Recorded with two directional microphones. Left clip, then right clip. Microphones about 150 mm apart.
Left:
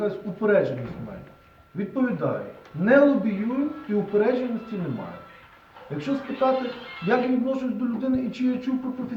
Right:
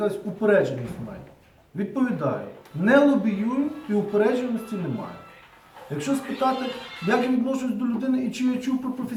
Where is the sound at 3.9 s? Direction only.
15° right (ahead or behind).